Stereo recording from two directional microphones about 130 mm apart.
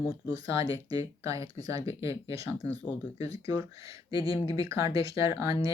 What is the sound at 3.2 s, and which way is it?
Speech, 25° right (ahead or behind).